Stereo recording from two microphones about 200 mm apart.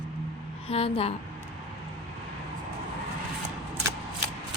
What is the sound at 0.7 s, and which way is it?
Speech, 30° left (ahead or behind).